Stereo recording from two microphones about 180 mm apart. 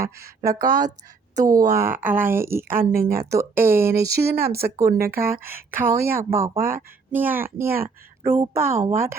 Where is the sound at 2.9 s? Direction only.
55° right (ahead or behind).